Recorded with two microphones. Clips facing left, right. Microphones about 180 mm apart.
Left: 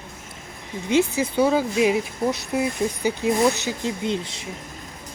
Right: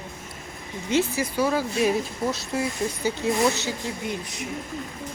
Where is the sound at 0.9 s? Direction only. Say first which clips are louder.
Left 3 dB; 15° left (ahead or behind).